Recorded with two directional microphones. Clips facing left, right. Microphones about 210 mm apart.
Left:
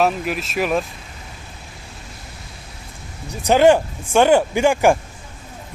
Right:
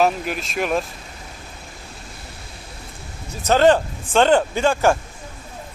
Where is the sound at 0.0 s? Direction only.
Centre (ahead or behind).